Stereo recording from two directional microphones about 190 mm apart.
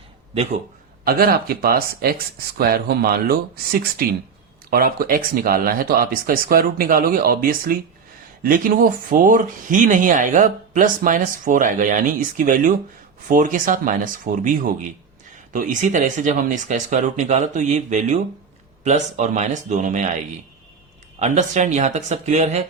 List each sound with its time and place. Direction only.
1.0 s speech: 50° right (ahead or behind)
21.2 s speech: 40° right (ahead or behind)